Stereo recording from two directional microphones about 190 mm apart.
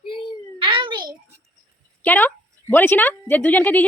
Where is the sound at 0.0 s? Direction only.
25° left (ahead or behind).